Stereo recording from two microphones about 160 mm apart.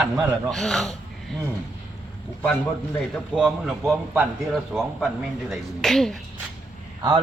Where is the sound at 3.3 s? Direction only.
Centre (ahead or behind).